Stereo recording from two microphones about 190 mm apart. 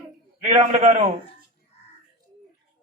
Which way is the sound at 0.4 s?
35° right (ahead or behind).